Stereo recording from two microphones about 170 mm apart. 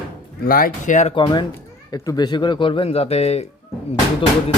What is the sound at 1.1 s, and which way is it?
Speech, 25° left (ahead or behind).